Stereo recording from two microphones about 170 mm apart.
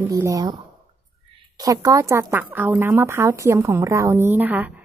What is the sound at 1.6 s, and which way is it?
Speech, 20° right (ahead or behind).